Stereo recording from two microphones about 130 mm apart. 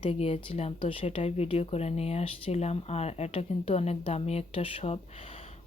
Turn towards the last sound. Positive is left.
turn(degrees=45)  # may be behind; listen again after turning